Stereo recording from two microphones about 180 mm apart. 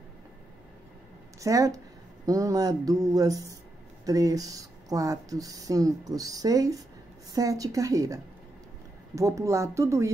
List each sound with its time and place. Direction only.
1.4 s speech: 20° right (ahead or behind)